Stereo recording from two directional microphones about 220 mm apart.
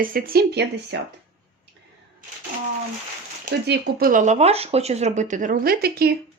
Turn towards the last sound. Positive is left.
turn(degrees=-45)  # may be behind; listen again after turning